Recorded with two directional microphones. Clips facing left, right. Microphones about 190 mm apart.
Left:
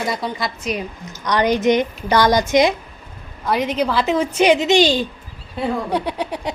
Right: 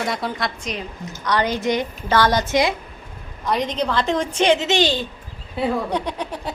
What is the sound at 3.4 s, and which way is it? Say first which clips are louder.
A woman's voice: left 3 dB; 5° left (ahead or behind).